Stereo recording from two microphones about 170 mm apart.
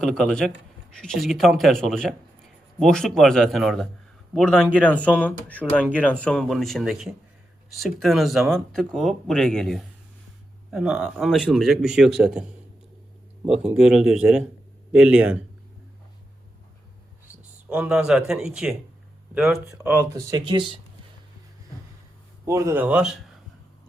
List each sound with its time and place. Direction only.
0.0 s speech: 5° left (ahead or behind)
17.7 s speech: 5° right (ahead or behind); by 20.7 s 30° right (ahead or behind)
22.4 s speech: 15° right (ahead or behind)